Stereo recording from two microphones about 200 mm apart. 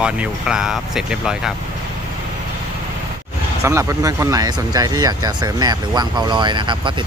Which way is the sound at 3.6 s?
15° right (ahead or behind).